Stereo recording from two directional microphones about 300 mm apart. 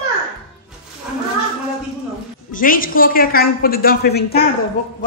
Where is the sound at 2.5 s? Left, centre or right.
Left.